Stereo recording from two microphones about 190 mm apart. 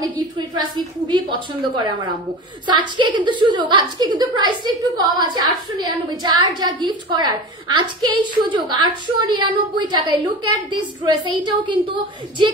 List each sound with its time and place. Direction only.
0.6 s a woman's voice: 25° right (ahead or behind)